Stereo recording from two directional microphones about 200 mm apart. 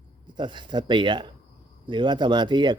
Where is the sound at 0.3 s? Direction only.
25° right (ahead or behind).